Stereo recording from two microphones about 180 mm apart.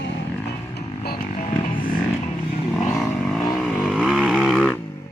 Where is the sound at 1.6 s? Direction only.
50° left (ahead or behind).